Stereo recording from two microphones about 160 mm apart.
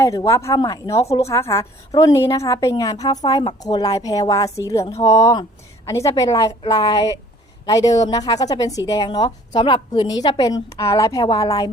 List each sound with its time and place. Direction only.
0.0 s a woman's voice: 20° left (ahead or behind)